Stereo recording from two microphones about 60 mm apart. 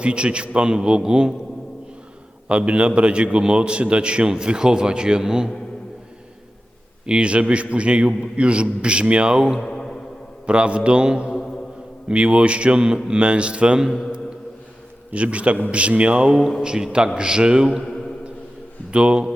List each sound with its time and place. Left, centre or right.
0.0 s a man's voice: centre
2.5 s a man's voice: centre
7.0 s a man's voice: centre
9.6 s a sound: centre
10.4 s a man's voice: centre
15.1 s a man's voice: right
17.8 s a sound: centre
18.9 s a man's voice: centre